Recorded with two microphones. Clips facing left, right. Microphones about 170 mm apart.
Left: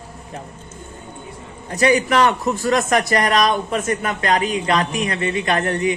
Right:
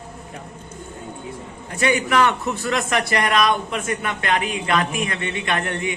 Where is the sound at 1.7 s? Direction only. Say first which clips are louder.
Left 3 dB; 35° left (ahead or behind).